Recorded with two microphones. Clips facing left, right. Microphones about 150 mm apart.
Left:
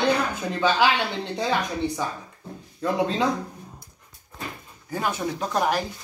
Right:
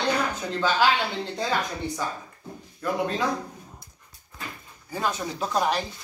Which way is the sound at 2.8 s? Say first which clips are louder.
Left 3 dB; 20° left (ahead or behind).